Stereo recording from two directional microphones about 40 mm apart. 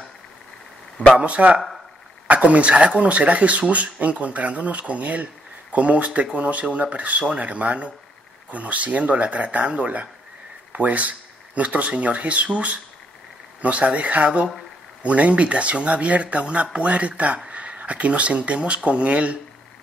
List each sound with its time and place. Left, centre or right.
1.1 s speech: right